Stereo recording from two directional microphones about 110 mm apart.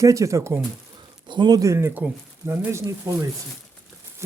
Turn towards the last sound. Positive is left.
turn(degrees=-25)  # may be behind; listen again after turning